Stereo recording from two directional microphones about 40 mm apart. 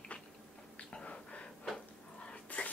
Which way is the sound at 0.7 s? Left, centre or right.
Left.